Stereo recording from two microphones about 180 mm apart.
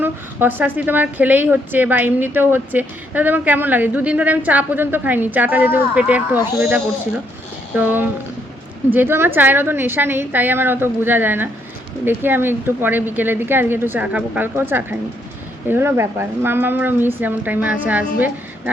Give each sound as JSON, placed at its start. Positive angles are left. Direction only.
{"t": 0.0, "sound": "a woman's voice", "side_deg": -10}